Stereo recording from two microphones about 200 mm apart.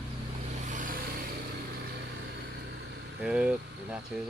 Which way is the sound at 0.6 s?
40° right (ahead or behind).